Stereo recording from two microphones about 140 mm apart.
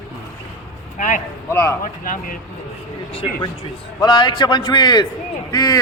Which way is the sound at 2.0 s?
75° left (ahead or behind).